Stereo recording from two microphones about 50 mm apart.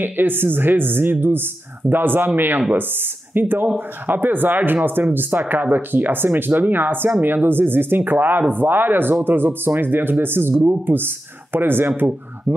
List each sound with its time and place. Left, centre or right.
0.0 s speech: right